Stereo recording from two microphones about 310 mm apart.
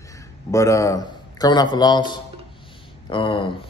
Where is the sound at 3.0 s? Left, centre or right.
Centre.